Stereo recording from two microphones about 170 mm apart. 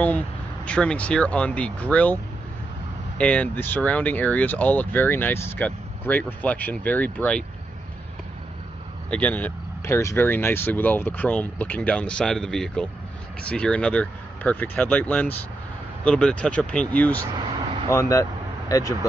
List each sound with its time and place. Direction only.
0.7 s speech: 5° left (ahead or behind)
3.2 s speech: 10° left (ahead or behind)
9.1 s speech: 10° left (ahead or behind)